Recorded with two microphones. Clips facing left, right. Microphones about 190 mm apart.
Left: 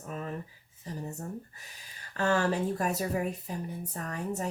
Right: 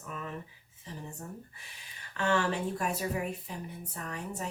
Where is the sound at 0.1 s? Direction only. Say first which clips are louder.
Left 3 dB; 40° left (ahead or behind).